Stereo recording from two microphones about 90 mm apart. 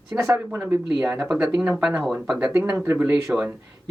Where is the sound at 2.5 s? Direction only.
25° right (ahead or behind).